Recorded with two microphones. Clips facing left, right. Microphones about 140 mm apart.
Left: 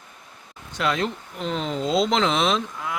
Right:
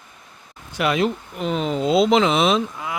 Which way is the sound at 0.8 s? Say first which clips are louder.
Right 4 dB; 5° right (ahead or behind).